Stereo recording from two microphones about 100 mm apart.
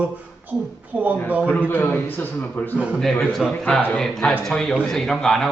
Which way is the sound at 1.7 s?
20° left (ahead or behind).